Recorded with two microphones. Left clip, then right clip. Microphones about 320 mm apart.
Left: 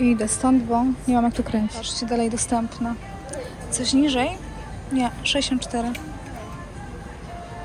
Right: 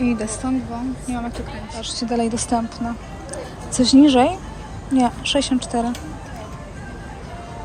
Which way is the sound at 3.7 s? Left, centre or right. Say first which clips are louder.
Right 8 dB; centre.